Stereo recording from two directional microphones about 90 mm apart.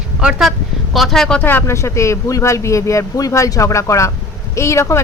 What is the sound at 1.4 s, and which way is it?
Speech, 30° left (ahead or behind).